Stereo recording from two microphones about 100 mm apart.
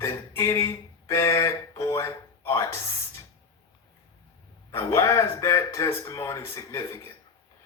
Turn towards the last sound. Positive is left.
turn(degrees=30)  # may be behind; listen again after turning